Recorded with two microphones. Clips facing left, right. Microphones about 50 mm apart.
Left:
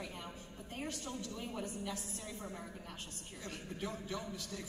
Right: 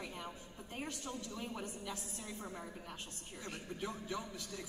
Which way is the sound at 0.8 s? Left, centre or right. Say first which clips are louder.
Left 1 dB; right.